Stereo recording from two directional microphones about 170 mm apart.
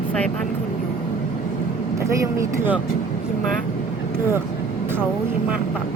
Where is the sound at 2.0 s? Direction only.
15° right (ahead or behind).